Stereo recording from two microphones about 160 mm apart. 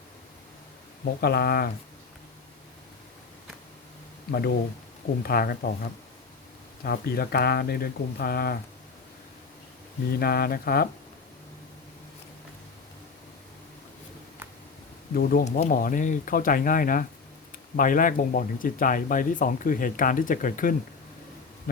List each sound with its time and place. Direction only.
1.2 s speech: 85° left
4.3 s speech: 85° left
5.2 s speech: 70° left (ahead or behind)
10.2 s speech: 70° left (ahead or behind)
15.1 s speech: 65° left (ahead or behind)